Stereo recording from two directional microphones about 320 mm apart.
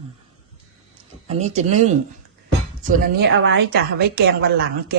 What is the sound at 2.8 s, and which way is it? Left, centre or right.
A woman's voice, right.